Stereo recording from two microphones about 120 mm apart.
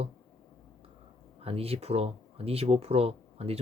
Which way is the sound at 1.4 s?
55° right (ahead or behind).